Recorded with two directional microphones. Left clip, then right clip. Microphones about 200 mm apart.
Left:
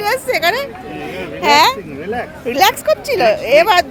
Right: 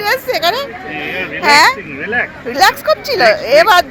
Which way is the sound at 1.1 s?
10° left (ahead or behind).